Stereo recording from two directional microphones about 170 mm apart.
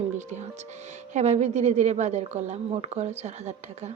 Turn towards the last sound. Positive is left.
turn(degrees=-40)  # may be behind; listen again after turning